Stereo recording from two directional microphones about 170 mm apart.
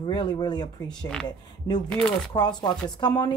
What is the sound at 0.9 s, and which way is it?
Speech, 5° left (ahead or behind).